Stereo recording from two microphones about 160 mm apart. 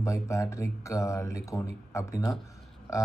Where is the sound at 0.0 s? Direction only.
20° left (ahead or behind).